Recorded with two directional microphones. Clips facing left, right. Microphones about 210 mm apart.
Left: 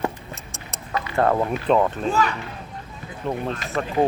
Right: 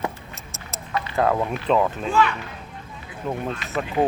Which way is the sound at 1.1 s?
Centre (ahead or behind).